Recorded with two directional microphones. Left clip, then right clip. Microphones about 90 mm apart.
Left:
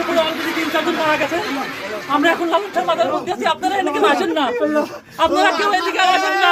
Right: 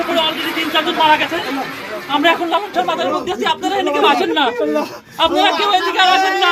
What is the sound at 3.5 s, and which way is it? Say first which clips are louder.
Speech: right 1 dB; 30° left (ahead or behind).